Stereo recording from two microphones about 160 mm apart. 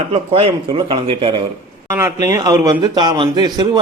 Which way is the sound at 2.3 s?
20° right (ahead or behind).